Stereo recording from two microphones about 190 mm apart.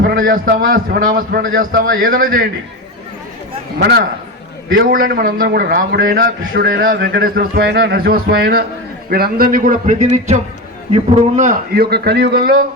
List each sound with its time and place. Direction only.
0.0 s a man's voice: 50° right (ahead or behind)
3.8 s a man's voice: 60° right (ahead or behind)
4.7 s a man's voice: 45° right (ahead or behind)